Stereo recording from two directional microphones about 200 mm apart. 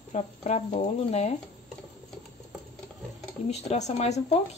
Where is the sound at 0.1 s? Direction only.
35° left (ahead or behind).